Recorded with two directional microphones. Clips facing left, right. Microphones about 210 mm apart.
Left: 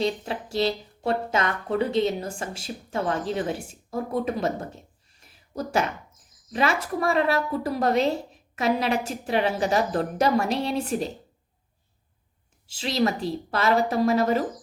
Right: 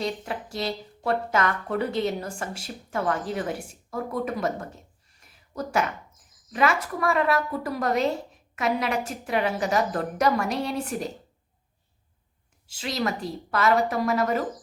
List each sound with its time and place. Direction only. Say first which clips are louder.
0.0 s a woman's voice: left 3 dB; 25° left (ahead or behind)
6.5 s a woman's voice: even; 30° left (ahead or behind)
12.6 s a woman's voice: left 4 dB; 25° left (ahead or behind)